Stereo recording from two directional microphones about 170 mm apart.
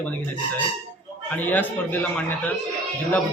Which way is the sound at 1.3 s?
10° left (ahead or behind).